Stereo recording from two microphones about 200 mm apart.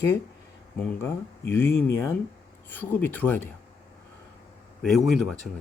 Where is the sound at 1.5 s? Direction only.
10° left (ahead or behind).